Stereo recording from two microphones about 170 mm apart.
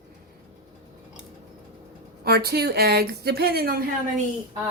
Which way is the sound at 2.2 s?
70° right (ahead or behind).